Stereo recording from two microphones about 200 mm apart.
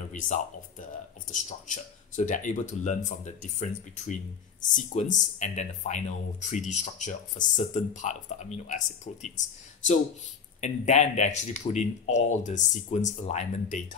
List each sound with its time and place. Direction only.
0.1 s speech: 40° left (ahead or behind)
10.6 s speech: 35° left (ahead or behind)